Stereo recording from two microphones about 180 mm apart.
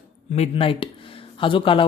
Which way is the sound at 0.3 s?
35° left (ahead or behind).